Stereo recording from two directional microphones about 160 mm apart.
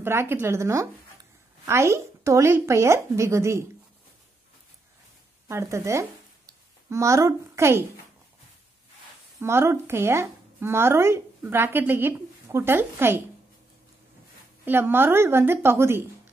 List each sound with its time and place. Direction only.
0.0 s speech: 15° right (ahead or behind)
5.5 s speech: 15° right (ahead or behind)
9.4 s speech: 15° right (ahead or behind)
14.6 s speech: 15° right (ahead or behind)